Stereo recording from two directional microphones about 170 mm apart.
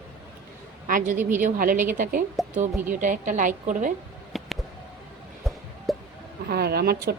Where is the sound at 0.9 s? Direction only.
50° right (ahead or behind).